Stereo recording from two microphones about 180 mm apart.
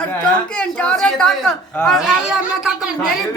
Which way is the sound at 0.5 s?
5° left (ahead or behind).